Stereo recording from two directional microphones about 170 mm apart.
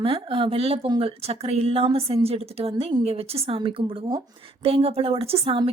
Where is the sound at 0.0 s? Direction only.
30° right (ahead or behind).